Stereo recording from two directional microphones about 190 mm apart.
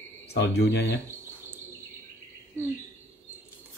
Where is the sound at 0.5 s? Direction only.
60° left (ahead or behind).